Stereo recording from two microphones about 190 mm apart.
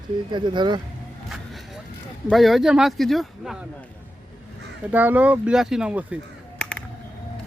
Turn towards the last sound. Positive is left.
turn(degrees=5)  # may be behind; listen again after turning